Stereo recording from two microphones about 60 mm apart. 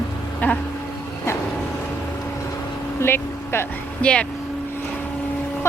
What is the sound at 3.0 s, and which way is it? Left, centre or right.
Speech, left.